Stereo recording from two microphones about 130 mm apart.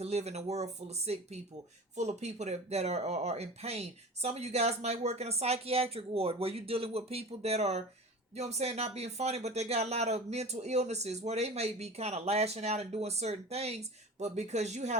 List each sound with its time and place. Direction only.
0.0 s speech: 55° right (ahead or behind)